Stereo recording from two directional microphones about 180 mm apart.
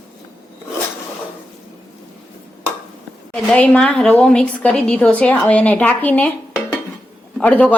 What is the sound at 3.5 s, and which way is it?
A woman's voice, 5° left (ahead or behind).